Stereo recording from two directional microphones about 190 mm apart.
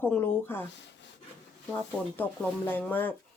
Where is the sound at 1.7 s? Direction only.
10° left (ahead or behind).